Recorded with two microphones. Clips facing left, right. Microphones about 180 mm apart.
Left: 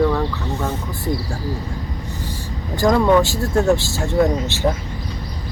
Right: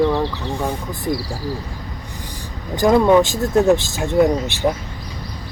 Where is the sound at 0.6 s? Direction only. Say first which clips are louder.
Right 1 dB; 15° right (ahead or behind).